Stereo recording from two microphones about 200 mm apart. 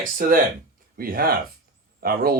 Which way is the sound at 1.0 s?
50° right (ahead or behind).